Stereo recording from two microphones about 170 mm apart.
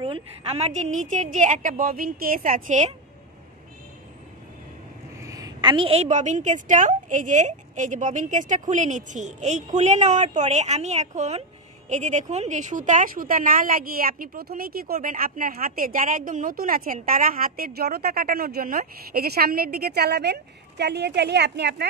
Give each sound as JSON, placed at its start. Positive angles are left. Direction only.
{"t": 0.0, "sound": "a woman's voice", "side_deg": -35}
{"t": 5.2, "sound": "a woman's voice", "side_deg": -20}